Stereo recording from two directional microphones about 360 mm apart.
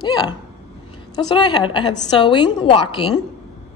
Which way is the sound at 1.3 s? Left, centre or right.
Centre.